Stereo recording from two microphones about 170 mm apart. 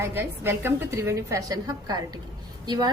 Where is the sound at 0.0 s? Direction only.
15° right (ahead or behind).